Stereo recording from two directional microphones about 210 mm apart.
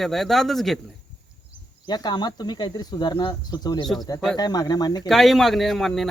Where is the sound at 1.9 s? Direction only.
20° left (ahead or behind).